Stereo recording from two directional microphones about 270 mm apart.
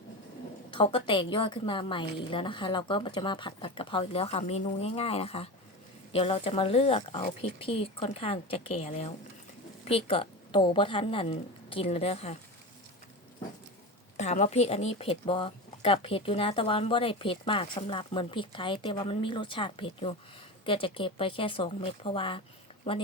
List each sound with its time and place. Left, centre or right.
0.8 s speech: centre
14.2 s speech: left